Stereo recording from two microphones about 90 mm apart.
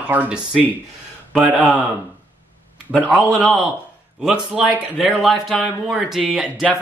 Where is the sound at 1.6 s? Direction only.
15° left (ahead or behind).